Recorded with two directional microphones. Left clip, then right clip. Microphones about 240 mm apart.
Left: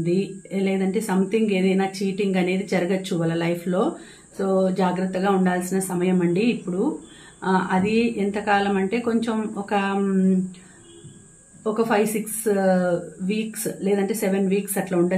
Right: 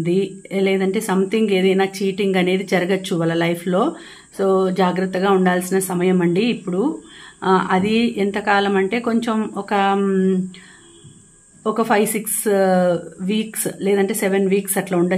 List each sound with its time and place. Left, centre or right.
0.0 s a woman's voice: right
11.6 s speech: right